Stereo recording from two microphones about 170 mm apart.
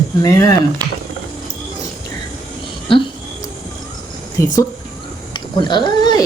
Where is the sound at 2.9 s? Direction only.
30° left (ahead or behind).